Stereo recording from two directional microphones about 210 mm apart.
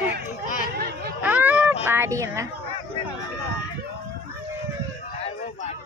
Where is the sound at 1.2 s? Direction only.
5° right (ahead or behind).